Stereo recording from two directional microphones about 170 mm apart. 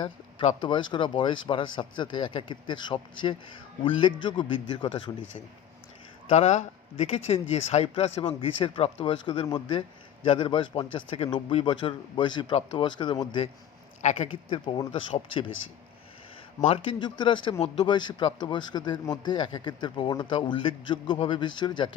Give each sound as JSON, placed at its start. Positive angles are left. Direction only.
{"t": 0.0, "sound": "speech", "side_deg": 30}
{"t": 6.2, "sound": "speech", "side_deg": 40}
{"t": 14.0, "sound": "speech", "side_deg": 40}
{"t": 16.6, "sound": "speech", "side_deg": 35}